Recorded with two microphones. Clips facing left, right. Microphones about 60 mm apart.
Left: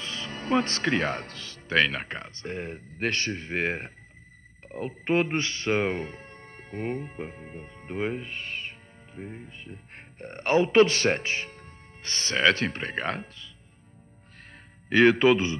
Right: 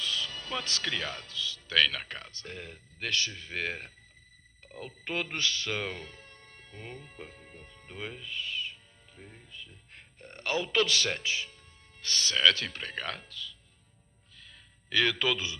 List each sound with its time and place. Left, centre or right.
0.0 s speech: left
14.4 s music: left